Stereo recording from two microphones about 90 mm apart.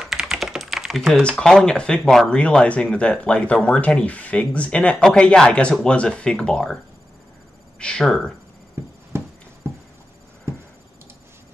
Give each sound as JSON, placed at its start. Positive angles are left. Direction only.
{"t": 0.0, "sound": "typing", "side_deg": -5}
{"t": 1.2, "sound": "speech", "side_deg": 10}
{"t": 7.8, "sound": "speech", "side_deg": 5}
{"t": 9.1, "sound": "writing", "side_deg": -30}